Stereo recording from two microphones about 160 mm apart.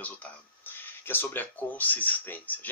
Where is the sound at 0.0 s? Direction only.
10° left (ahead or behind).